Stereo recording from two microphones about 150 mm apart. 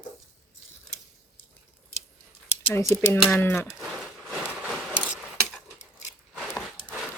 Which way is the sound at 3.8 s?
Centre (ahead or behind).